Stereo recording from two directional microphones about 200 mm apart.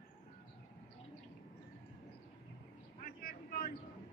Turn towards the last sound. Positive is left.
turn(degrees=45)  # may be behind; listen again after turning